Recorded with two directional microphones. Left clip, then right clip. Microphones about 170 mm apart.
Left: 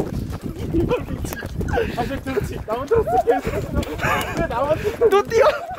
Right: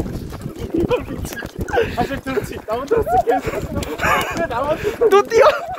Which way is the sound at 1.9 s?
50° right (ahead or behind).